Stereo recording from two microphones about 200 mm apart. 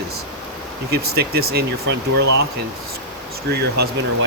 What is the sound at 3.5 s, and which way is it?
Speech, 55° right (ahead or behind).